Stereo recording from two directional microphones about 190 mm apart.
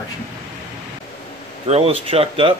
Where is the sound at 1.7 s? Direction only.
30° right (ahead or behind).